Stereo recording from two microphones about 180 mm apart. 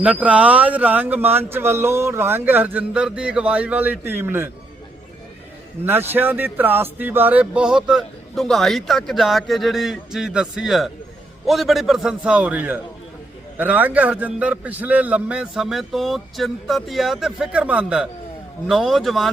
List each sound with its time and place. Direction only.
0.0 s a man's voice: 5° right (ahead or behind)
5.8 s a man's voice: 10° right (ahead or behind)